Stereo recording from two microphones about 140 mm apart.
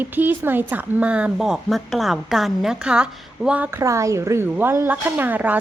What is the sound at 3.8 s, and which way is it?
Speech, 20° right (ahead or behind).